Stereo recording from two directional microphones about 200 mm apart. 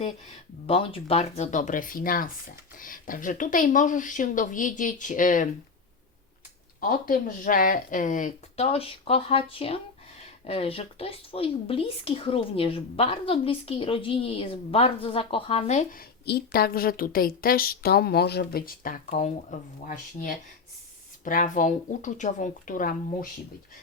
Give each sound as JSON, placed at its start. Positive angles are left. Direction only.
{"t": 0.7, "sound": "speech", "side_deg": 25}
{"t": 6.7, "sound": "a woman's voice", "side_deg": 45}